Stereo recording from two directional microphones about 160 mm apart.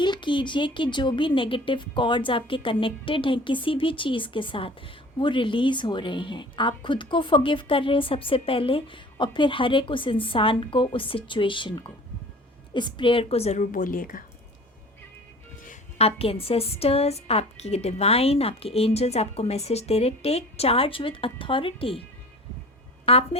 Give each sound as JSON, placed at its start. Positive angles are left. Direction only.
{"t": 0.0, "sound": "a woman's voice", "side_deg": 30}
{"t": 15.6, "sound": "a woman's voice", "side_deg": 45}
{"t": 23.0, "sound": "a woman's voice", "side_deg": 40}